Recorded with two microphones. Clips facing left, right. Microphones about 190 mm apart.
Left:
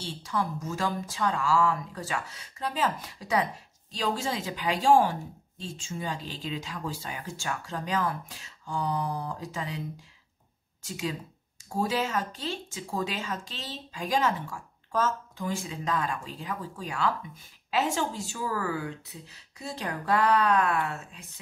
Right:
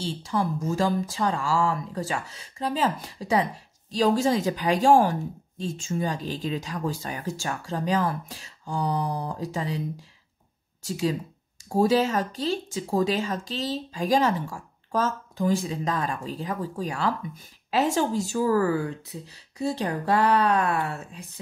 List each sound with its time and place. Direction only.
0.0 s speech: 30° right (ahead or behind)
3.9 s a woman's voice: 40° right (ahead or behind)
10.8 s speech: 35° right (ahead or behind)